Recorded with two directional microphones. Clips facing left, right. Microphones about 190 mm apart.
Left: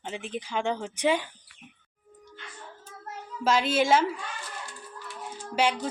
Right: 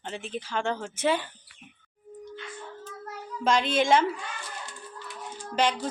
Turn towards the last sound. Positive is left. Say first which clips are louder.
# even
turn(degrees=10)  # may be behind; listen again after turning